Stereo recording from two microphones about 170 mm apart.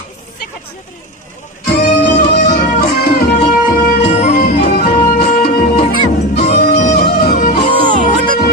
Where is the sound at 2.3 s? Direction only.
70° left (ahead or behind).